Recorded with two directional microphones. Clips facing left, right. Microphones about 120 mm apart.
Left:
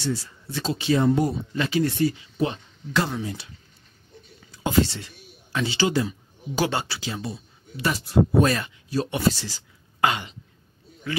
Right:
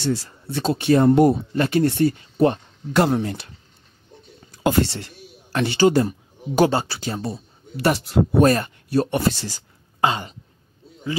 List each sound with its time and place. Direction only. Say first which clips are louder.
0.5 s a woman's voice: right 5 dB; 55° right (ahead or behind)
6.7 s speech: right 5 dB; 40° right (ahead or behind)
9.9 s throat clearing: right 2 dB; 25° right (ahead or behind)